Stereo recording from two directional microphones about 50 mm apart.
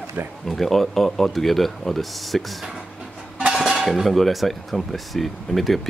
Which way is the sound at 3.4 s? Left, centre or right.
Centre.